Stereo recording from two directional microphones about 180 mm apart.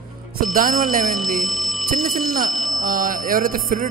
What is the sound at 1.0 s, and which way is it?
Speech, centre (ahead or behind).